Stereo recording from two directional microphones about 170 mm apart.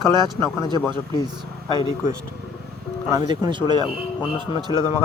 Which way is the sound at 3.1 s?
25° right (ahead or behind).